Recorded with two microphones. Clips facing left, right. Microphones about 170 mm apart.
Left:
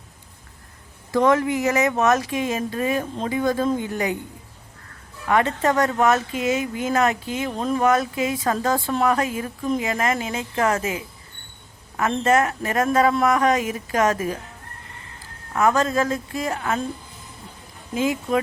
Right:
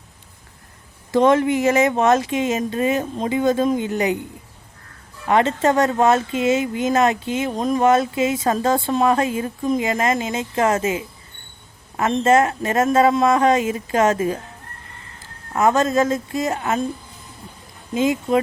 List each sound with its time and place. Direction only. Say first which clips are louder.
1.1 s speech: right 3 dB; 25° right (ahead or behind)
5.3 s speech: right 3 dB; 25° right (ahead or behind)
15.5 s speech: right 3 dB; 25° right (ahead or behind)
17.9 s speech: right 3 dB; 25° right (ahead or behind)